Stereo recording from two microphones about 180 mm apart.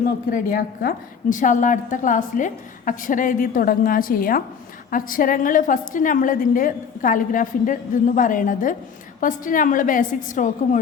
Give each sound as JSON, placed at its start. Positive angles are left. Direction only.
{"t": 0.3, "sound": "a woman's voice", "side_deg": 50}